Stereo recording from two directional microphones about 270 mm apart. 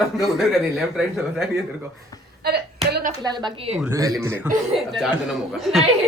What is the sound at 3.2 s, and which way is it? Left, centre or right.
Speech, centre.